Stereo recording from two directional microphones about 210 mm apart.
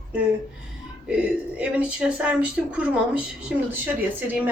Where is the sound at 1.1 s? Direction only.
5° right (ahead or behind).